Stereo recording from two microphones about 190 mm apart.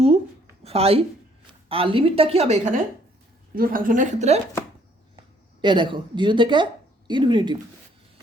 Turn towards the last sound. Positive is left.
turn(degrees=-25)  # may be behind; listen again after turning